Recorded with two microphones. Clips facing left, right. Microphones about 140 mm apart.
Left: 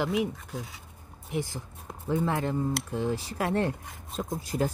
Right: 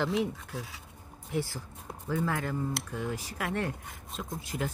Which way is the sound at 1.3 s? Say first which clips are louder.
Left 1 dB; 20° left (ahead or behind).